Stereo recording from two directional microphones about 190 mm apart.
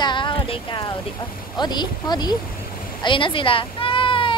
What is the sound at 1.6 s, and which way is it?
Speech, 20° left (ahead or behind).